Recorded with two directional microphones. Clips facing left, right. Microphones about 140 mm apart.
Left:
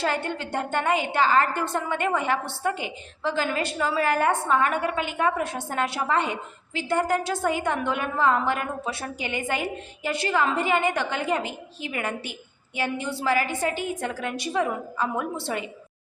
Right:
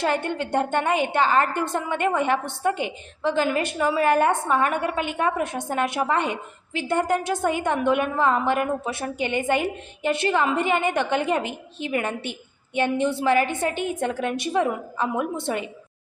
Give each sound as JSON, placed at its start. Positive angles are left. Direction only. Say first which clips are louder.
{"t": 0.0, "sound": "a woman's voice", "louder": "right 3 dB", "side_deg": -20}